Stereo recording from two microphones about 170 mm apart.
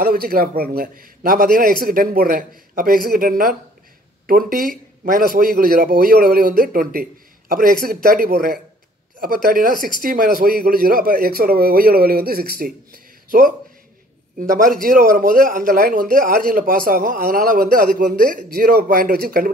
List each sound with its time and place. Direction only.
0.0 s a man's voice: 60° right (ahead or behind)
14.8 s a man's voice: 55° right (ahead or behind)